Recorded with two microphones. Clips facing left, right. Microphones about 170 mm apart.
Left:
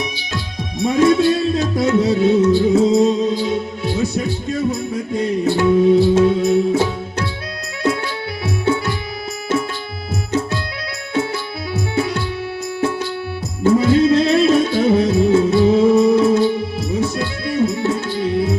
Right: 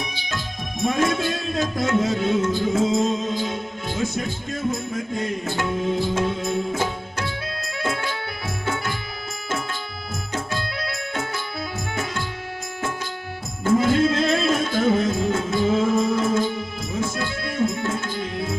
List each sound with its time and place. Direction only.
0.8 s music: 50° right (ahead or behind)
8.6 s music: 50° right (ahead or behind)
11.7 s music: 45° right (ahead or behind)
13.7 s music: 50° right (ahead or behind)